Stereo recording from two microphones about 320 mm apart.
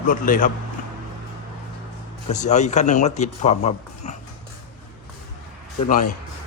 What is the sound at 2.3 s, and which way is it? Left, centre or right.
Speech, left.